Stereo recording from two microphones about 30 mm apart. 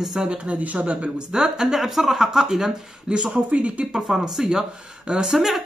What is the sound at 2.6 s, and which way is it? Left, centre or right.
Speech, right.